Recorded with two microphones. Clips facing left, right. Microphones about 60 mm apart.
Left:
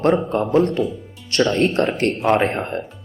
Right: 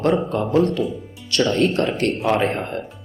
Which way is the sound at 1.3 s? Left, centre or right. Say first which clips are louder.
Left 1 dB; left.